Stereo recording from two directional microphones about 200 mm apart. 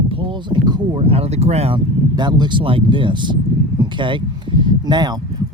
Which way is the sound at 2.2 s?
20° right (ahead or behind).